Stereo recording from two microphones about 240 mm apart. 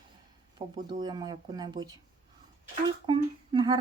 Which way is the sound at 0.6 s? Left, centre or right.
Right.